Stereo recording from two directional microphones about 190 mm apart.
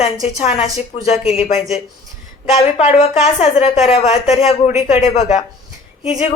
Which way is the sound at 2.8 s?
35° left (ahead or behind).